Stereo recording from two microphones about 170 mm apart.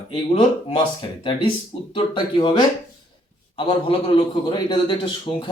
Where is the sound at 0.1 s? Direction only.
30° left (ahead or behind).